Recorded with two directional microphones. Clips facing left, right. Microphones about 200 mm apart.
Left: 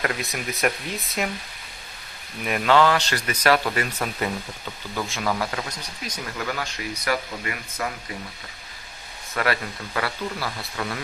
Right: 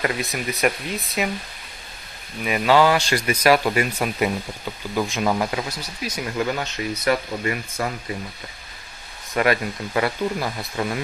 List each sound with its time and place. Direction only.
0.0 s speech: centre (ahead or behind)
2.4 s speech: 5° right (ahead or behind)
6.4 s speech: 25° right (ahead or behind)
9.3 s speech: 15° right (ahead or behind)